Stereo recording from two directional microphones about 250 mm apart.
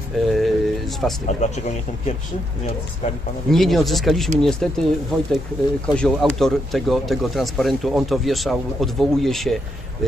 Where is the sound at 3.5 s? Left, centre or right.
Centre.